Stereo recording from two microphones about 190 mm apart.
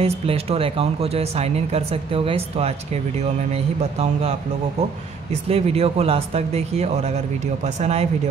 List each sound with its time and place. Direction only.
0.0 s speech: 30° right (ahead or behind)
5.5 s speech: 30° right (ahead or behind)